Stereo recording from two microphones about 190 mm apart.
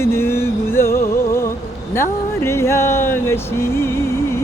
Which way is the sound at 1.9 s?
15° left (ahead or behind).